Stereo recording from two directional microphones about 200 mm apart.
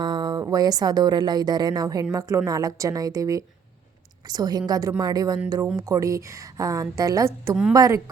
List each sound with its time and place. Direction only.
0.0 s a woman's voice: 20° right (ahead or behind)